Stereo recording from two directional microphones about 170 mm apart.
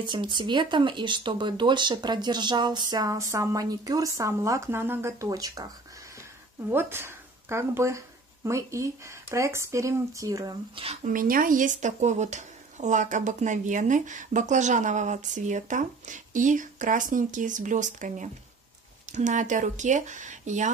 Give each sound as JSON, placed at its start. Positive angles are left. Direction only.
{"t": 0.0, "sound": "speech", "side_deg": -25}
{"t": 6.7, "sound": "speech", "side_deg": -15}
{"t": 11.1, "sound": "speech", "side_deg": -55}